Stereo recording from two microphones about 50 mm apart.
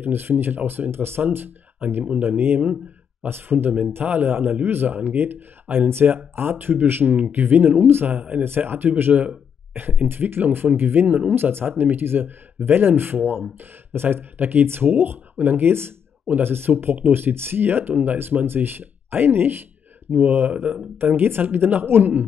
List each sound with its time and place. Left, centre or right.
0.0 s speech: right
4.0 s speech: right
8.2 s speech: right
8.5 s speech: right